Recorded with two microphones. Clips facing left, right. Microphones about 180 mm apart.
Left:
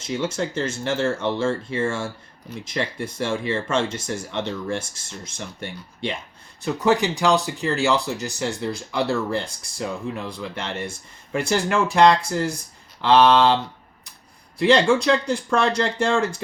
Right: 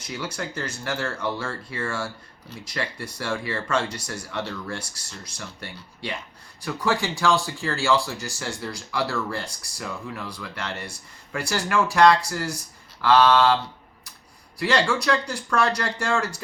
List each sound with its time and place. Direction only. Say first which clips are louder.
0.0 s speech: left 7 dB; 25° left (ahead or behind)
14.6 s speech: left 6 dB; 20° left (ahead or behind)